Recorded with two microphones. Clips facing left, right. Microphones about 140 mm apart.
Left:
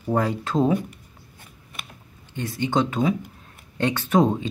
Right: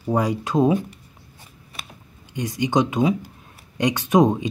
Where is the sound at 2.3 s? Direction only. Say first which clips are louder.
Right 3 dB; 15° right (ahead or behind).